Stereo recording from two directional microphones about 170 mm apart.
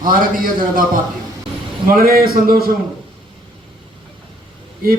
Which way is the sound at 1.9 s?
60° right (ahead or behind).